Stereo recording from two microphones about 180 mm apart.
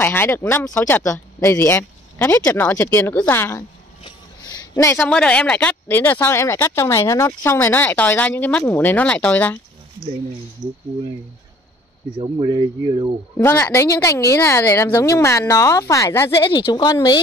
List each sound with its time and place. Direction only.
0.0 s speech: 10° left (ahead or behind)
4.0 s a sound: 20° left (ahead or behind)
4.9 s speech: 5° left (ahead or behind)
12.2 s speech: 25° right (ahead or behind)
13.4 s speech: 15° left (ahead or behind)